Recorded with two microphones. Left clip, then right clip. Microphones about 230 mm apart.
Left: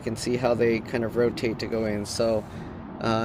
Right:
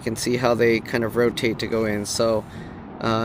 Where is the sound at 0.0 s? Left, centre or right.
Right.